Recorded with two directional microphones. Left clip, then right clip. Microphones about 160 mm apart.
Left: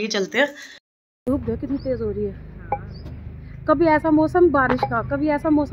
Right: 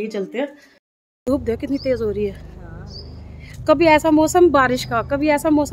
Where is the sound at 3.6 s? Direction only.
35° right (ahead or behind).